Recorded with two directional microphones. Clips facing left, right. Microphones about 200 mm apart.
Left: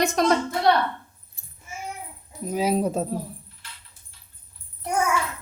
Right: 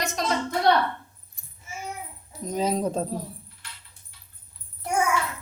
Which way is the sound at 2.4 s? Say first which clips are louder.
Left 2 dB; 10° left (ahead or behind).